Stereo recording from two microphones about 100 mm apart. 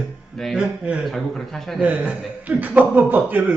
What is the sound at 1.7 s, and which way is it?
Speech, 15° right (ahead or behind).